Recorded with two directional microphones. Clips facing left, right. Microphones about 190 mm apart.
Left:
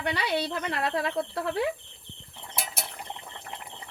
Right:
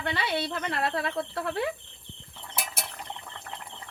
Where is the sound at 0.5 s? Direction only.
10° left (ahead or behind).